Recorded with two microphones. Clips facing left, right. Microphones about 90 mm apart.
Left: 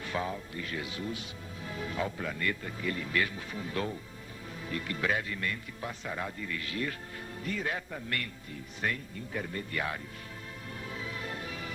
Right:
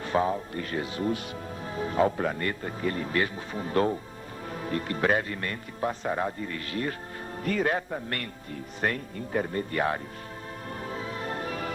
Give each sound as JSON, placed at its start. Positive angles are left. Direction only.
{"t": 0.0, "sound": "music", "side_deg": -35}
{"t": 0.5, "sound": "speech", "side_deg": -45}
{"t": 7.4, "sound": "speech", "side_deg": -60}
{"t": 10.8, "sound": "music", "side_deg": -40}